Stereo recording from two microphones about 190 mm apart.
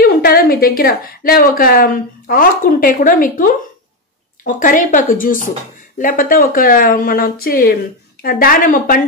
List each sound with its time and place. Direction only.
0.0 s a woman's voice: 55° left (ahead or behind)